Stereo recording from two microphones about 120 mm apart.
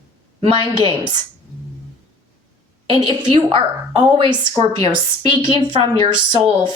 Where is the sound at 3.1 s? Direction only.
45° right (ahead or behind).